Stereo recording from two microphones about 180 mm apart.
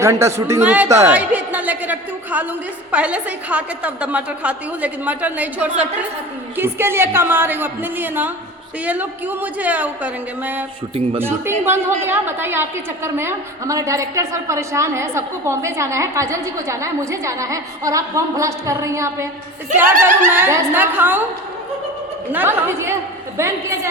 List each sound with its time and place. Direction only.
0.0 s a woman's voice: 15° right (ahead or behind)
20.3 s a woman's voice: 15° right (ahead or behind)
22.3 s a woman's voice: 10° right (ahead or behind)